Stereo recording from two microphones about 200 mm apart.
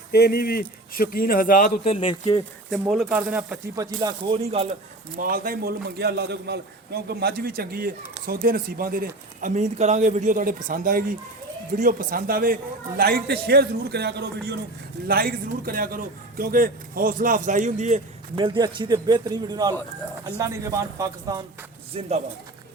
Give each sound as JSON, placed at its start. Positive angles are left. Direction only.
{"t": 0.1, "sound": "speech", "side_deg": 50}
{"t": 2.9, "sound": "speech", "side_deg": -5}
{"t": 4.0, "sound": "speech", "side_deg": -30}
{"t": 5.1, "sound": "a man's voice", "side_deg": -45}
{"t": 18.3, "sound": "speech", "side_deg": -25}
{"t": 22.0, "sound": "speech", "side_deg": -30}